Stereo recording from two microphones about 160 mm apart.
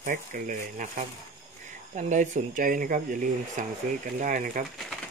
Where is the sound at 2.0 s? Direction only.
55° right (ahead or behind).